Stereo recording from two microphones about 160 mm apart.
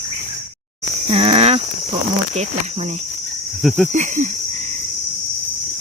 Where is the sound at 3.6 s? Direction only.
Centre (ahead or behind).